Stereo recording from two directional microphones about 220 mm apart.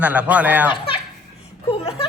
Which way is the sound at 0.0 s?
5° right (ahead or behind).